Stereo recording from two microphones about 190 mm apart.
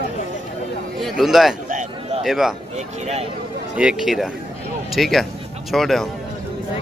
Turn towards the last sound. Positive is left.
turn(degrees=0)  # may be behind; listen again after turning